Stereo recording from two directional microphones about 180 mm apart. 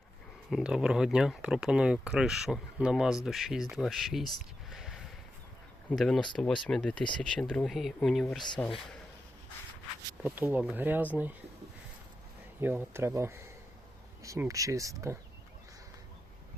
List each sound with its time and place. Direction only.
0.5 s speech: 5° right (ahead or behind)
10.2 s speech: 10° right (ahead or behind)
12.5 s speech: 10° right (ahead or behind)